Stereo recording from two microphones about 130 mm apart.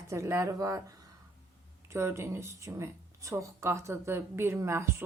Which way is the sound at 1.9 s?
20° right (ahead or behind).